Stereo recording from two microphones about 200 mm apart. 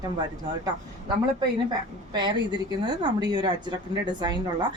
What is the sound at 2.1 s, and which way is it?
A woman's voice, 20° right (ahead or behind).